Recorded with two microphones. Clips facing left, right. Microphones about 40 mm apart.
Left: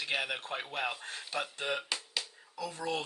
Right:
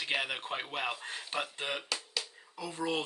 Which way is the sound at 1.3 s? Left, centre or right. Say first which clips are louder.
Even; right.